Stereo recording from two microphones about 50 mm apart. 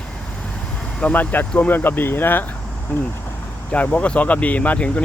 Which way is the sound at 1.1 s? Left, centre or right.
Left.